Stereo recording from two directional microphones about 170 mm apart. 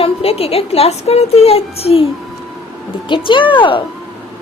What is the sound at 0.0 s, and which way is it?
Speech, 35° left (ahead or behind).